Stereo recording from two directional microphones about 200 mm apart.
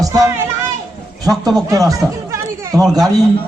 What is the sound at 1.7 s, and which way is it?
Chatter, 15° right (ahead or behind).